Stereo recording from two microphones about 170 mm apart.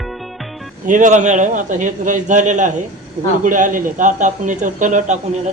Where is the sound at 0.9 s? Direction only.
50° right (ahead or behind).